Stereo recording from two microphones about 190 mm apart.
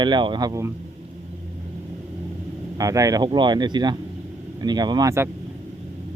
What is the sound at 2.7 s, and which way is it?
Speech, 20° right (ahead or behind).